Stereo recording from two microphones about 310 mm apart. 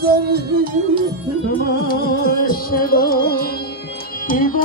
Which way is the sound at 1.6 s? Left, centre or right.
Left.